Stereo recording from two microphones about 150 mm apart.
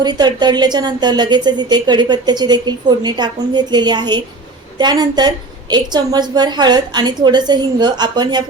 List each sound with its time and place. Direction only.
0.0 s a woman's voice: 30° right (ahead or behind)